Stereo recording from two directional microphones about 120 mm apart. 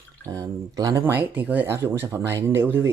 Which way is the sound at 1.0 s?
15° right (ahead or behind).